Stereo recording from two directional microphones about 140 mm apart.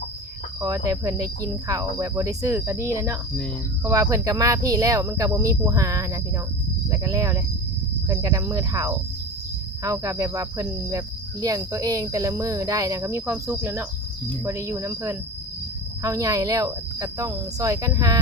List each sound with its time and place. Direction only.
0.6 s cricket: 25° right (ahead or behind)